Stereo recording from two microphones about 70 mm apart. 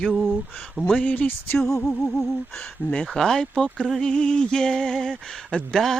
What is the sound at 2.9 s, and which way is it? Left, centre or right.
Music, centre.